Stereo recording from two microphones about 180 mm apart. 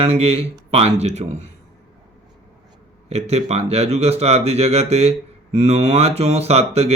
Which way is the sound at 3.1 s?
35° right (ahead or behind).